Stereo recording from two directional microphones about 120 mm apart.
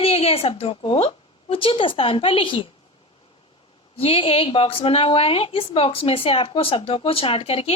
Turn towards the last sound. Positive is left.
turn(degrees=50)  # may be behind; listen again after turning